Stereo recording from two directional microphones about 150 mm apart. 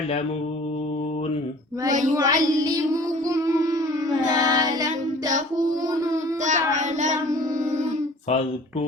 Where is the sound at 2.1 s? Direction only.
25° right (ahead or behind).